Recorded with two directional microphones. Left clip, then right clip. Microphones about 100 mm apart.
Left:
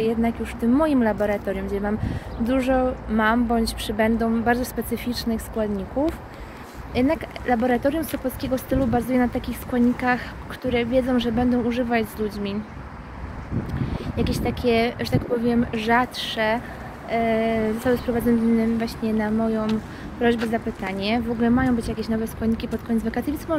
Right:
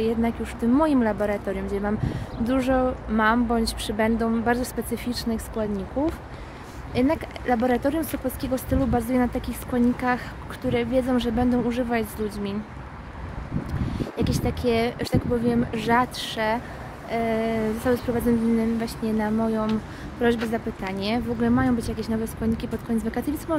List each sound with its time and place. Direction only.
0.0 s speech: 55° right (ahead or behind)
11.9 s speech: 40° right (ahead or behind)
13.9 s speech: 40° right (ahead or behind); by 20.5 s 60° right (ahead or behind)
20.5 s speech: 40° right (ahead or behind)